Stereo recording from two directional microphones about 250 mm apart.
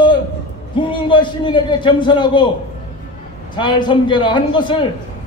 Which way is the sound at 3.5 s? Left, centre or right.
Centre.